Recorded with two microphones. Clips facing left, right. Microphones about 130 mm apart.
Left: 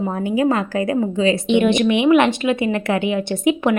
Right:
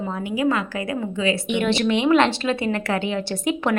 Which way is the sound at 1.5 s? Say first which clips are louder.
Left 6 dB; 20° left (ahead or behind).